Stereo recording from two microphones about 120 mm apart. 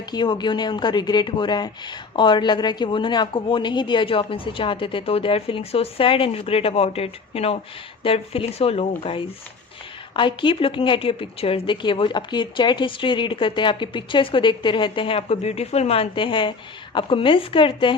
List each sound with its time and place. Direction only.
0.0 s a woman's voice: 35° left (ahead or behind)